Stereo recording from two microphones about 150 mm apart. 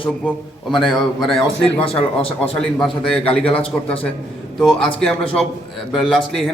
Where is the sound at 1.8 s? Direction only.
40° left (ahead or behind).